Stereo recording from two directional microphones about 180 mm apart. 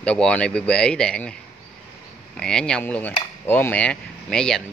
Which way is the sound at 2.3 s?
5° left (ahead or behind).